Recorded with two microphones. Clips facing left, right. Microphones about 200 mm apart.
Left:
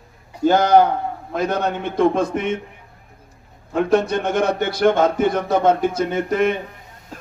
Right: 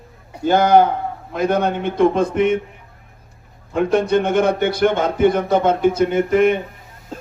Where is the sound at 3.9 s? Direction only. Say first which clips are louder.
Right 2 dB; 55° right (ahead or behind).